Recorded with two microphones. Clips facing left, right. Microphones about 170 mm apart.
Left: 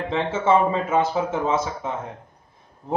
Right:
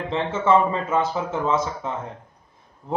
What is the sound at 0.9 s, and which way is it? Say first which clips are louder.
Speech: left 1 dB; 15° left (ahead or behind).